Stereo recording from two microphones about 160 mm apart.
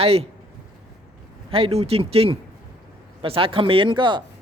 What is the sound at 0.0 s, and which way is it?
Speech, 35° right (ahead or behind).